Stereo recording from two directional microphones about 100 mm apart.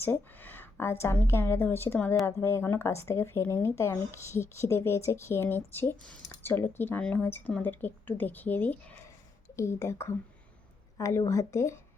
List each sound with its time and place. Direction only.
0.0 s speech: 20° left (ahead or behind)